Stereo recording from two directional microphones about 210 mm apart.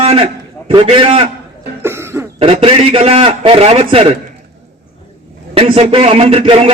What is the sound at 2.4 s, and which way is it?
Speech, 25° right (ahead or behind).